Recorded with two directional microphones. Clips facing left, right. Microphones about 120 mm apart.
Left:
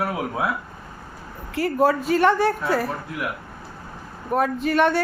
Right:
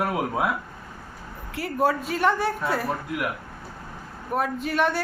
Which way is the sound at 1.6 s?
Centre (ahead or behind).